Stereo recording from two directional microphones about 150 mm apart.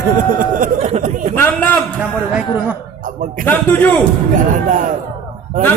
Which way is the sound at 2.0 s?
5° right (ahead or behind).